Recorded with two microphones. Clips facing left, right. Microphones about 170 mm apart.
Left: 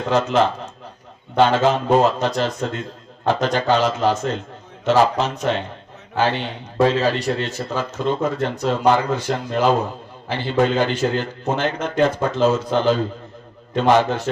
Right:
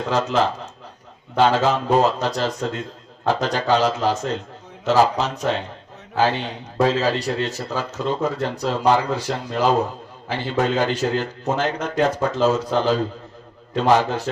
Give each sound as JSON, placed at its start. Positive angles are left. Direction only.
{"t": 0.0, "sound": "a man's voice", "side_deg": -35}